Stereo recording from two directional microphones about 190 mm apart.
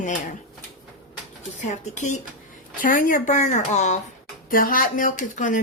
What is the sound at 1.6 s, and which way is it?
Speech, 40° left (ahead or behind).